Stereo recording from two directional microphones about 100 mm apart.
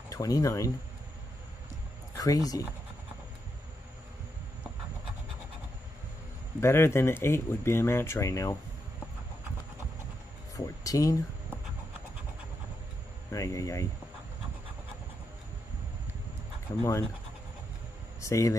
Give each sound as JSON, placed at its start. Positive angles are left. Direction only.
{"t": 0.1, "sound": "speech", "side_deg": 35}
{"t": 2.1, "sound": "speech", "side_deg": 35}
{"t": 6.6, "sound": "speech", "side_deg": 25}
{"t": 10.5, "sound": "speech", "side_deg": 35}
{"t": 13.3, "sound": "speech", "side_deg": 35}
{"t": 16.7, "sound": "speech", "side_deg": 40}
{"t": 18.2, "sound": "speech", "side_deg": 30}